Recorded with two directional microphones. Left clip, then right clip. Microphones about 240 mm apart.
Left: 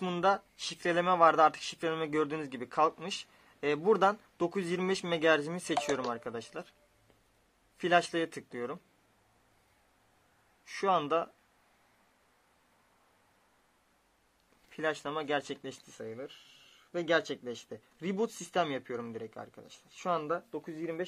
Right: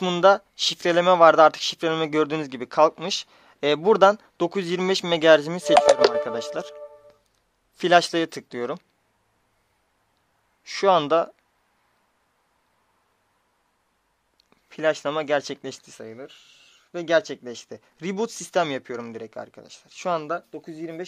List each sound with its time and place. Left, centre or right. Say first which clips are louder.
0.0 s speech: right 12 dB; right
7.7 s speech: right 10 dB; right
10.6 s speech: right 11 dB; right
14.7 s speech: right 11 dB; right